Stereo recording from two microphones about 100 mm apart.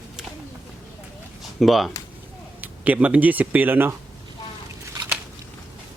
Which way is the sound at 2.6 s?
15° right (ahead or behind).